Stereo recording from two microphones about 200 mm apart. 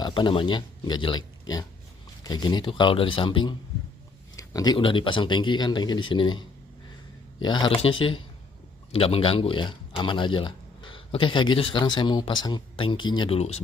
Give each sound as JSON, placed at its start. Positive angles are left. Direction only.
{"t": 0.0, "sound": "speech", "side_deg": 25}
{"t": 7.4, "sound": "speech", "side_deg": 25}